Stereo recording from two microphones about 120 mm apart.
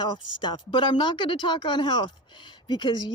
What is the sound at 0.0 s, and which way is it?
Speech, 35° left (ahead or behind).